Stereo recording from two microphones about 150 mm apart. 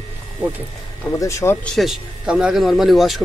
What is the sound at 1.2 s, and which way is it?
Speech, 20° left (ahead or behind).